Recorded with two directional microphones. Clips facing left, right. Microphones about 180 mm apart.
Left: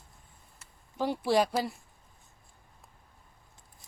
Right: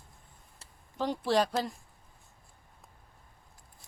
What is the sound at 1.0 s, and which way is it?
Speech, 10° left (ahead or behind).